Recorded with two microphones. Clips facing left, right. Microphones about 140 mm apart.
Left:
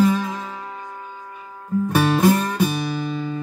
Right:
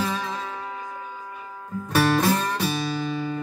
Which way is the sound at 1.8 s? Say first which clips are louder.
Left 3 dB; 15° left (ahead or behind).